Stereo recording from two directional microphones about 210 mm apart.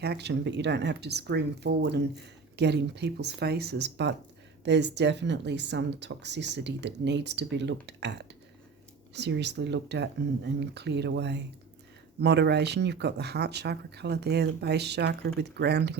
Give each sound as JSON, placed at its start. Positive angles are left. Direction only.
{"t": 0.0, "sound": "speech", "side_deg": -50}